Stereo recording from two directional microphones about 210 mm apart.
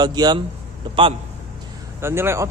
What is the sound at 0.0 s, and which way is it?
Speech, 20° right (ahead or behind).